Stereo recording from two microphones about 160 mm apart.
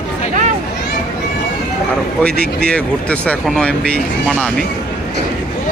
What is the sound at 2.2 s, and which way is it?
Speech, 5° left (ahead or behind).